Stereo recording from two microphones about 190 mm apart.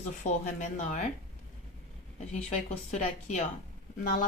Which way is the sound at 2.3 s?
35° left (ahead or behind).